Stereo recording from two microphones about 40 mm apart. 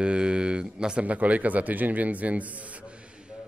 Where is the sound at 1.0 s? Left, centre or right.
Right.